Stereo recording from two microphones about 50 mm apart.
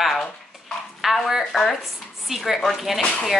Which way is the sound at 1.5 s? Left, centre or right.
Centre.